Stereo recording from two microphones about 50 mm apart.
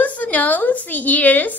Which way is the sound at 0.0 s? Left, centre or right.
Left.